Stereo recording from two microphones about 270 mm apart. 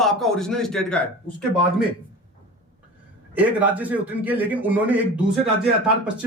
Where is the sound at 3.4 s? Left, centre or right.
Centre.